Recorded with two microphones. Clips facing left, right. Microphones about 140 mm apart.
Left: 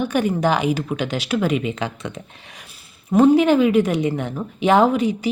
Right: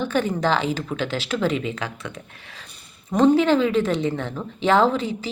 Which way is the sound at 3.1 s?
10° left (ahead or behind).